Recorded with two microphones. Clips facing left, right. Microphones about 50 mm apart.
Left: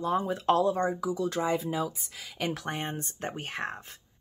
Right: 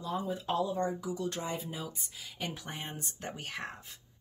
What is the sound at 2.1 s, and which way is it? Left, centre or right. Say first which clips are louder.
Speech: left 7 dB; left.